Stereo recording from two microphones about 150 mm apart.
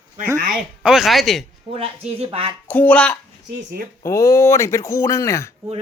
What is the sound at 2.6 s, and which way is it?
Speech, 10° left (ahead or behind).